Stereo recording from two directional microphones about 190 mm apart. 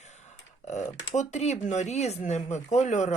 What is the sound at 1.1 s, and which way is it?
Speech, 35° left (ahead or behind).